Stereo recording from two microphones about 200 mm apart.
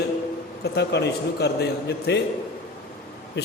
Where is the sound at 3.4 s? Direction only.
55° left (ahead or behind).